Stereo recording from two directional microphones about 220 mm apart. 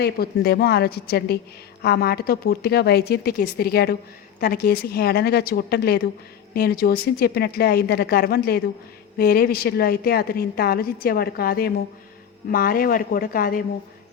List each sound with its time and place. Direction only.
0.0 s a woman's voice: 45° left (ahead or behind)